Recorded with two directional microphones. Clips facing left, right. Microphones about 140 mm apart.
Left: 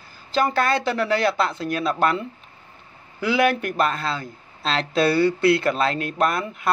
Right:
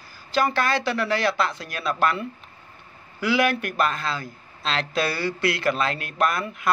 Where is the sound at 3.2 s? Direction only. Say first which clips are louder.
Left 2 dB; 30° left (ahead or behind).